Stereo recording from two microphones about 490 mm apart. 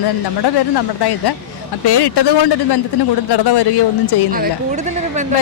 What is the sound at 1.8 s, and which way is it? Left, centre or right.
Speech, left.